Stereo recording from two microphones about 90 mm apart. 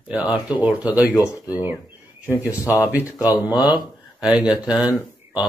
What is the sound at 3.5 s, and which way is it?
Speech, 50° left (ahead or behind).